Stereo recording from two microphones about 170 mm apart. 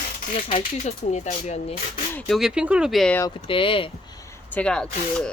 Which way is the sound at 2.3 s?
5° right (ahead or behind).